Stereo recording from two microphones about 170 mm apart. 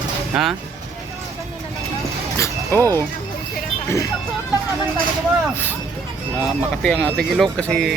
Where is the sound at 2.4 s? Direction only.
15° left (ahead or behind).